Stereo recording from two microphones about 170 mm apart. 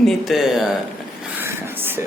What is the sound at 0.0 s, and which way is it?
Speech, centre (ahead or behind).